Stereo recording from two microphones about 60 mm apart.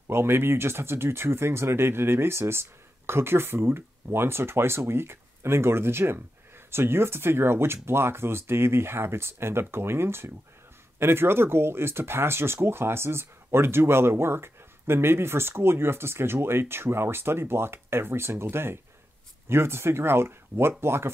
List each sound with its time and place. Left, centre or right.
0.1 s speech: right